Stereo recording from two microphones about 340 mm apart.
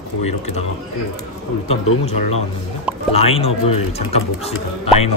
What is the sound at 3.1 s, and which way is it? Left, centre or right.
A man's voice, centre.